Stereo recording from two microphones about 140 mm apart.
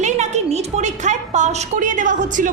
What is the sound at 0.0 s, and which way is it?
A woman's voice, 55° right (ahead or behind).